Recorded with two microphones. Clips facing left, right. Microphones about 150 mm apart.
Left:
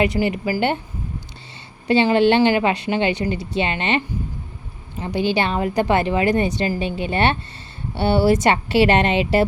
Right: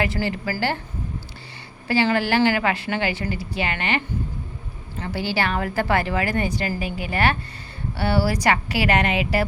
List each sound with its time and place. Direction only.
0.0 s a woman's voice: 20° left (ahead or behind)
1.9 s a woman's voice: 20° left (ahead or behind)